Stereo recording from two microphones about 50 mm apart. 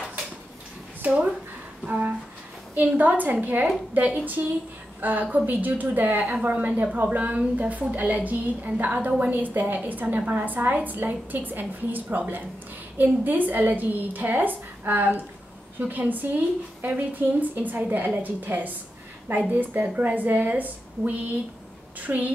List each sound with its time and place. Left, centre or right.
1.0 s speech: right
1.9 s a sound: right
2.7 s a woman's voice: right